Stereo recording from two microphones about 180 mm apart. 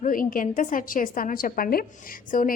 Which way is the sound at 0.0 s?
50° left (ahead or behind).